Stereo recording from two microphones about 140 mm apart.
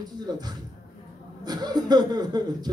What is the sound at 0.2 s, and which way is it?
Speech, 30° right (ahead or behind).